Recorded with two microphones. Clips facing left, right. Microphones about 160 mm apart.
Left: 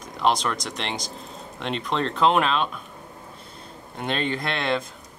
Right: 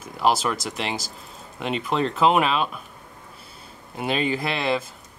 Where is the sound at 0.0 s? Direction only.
5° right (ahead or behind).